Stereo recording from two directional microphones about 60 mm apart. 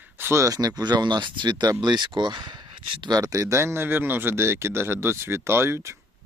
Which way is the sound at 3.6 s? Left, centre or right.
Right.